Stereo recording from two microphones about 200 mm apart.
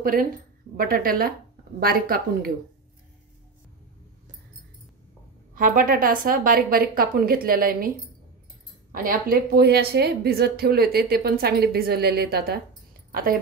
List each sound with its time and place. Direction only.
0.0 s a woman's voice: 45° right (ahead or behind)
5.5 s a woman's voice: 45° right (ahead or behind)
8.9 s a woman's voice: 45° right (ahead or behind)